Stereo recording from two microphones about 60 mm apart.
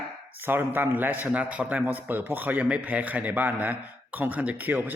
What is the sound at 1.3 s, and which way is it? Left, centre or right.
A man's voice, right.